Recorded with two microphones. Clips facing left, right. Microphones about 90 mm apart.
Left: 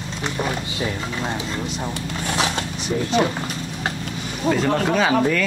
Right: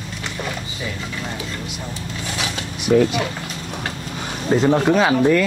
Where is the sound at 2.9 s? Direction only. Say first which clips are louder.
Right 10 dB; 80° right.